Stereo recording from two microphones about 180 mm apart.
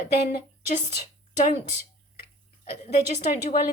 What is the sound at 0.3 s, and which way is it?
Speech, 50° left (ahead or behind).